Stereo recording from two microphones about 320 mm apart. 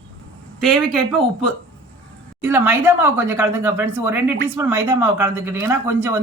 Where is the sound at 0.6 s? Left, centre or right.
Centre.